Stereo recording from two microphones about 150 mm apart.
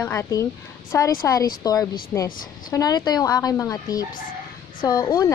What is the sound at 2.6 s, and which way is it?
A woman's voice, 25° left (ahead or behind).